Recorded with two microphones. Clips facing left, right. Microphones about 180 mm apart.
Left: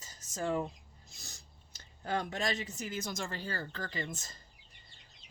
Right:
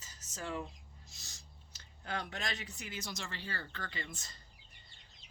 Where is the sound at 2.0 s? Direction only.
40° left (ahead or behind).